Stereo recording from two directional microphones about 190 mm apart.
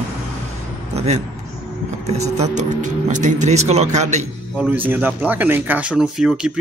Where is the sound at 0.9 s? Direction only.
35° right (ahead or behind).